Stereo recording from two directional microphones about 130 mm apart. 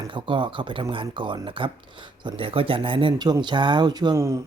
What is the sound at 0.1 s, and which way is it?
Speech, 40° right (ahead or behind).